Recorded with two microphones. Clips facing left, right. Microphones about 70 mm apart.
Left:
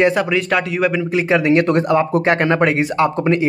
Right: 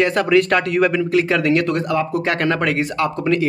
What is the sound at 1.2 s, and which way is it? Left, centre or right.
Speech, left.